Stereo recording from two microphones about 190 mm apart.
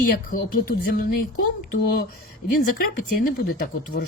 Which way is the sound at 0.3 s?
50° left (ahead or behind).